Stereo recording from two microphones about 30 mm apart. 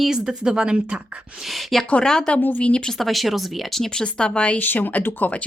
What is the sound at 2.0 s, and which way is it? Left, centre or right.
Speech, left.